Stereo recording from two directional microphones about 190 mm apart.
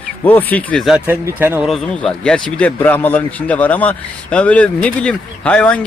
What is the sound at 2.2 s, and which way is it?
Speech, 5° left (ahead or behind).